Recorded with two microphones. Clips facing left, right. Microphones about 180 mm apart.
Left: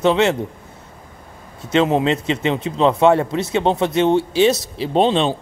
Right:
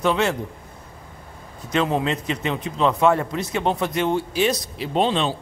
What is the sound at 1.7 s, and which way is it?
A man's voice, 25° left (ahead or behind).